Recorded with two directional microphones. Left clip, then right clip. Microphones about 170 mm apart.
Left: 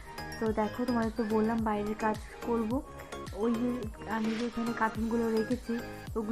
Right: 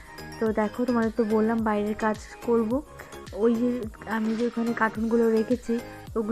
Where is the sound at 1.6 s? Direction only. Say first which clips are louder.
Right 5 dB; 35° right (ahead or behind).